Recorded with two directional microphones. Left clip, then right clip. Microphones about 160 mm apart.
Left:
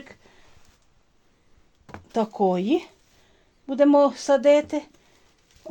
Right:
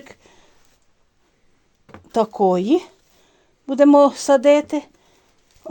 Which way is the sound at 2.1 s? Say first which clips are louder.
Right 6 dB; 60° right (ahead or behind).